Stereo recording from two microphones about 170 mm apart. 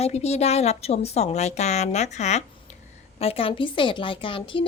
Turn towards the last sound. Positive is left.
turn(degrees=30)  # may be behind; listen again after turning